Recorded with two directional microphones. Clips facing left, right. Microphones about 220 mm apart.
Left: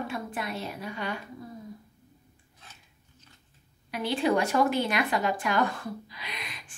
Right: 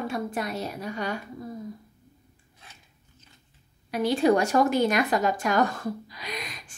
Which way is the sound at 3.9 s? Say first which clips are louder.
Right 5 dB; 45° right (ahead or behind).